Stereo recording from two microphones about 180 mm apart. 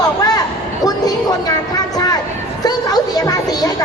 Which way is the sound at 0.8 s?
20° left (ahead or behind).